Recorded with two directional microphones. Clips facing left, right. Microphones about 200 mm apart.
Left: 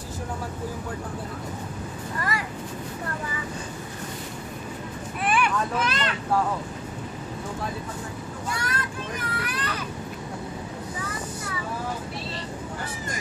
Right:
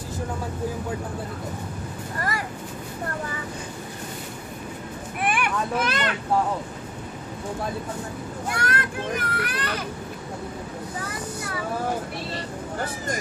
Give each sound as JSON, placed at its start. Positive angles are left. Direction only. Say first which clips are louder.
{"t": 2.1, "sound": "vehicle", "louder": "right 1 dB", "side_deg": -45}
{"t": 5.2, "sound": "vehicle", "louder": "left 1 dB", "side_deg": -55}
{"t": 8.5, "sound": "a child's voice", "louder": "right 4 dB", "side_deg": -60}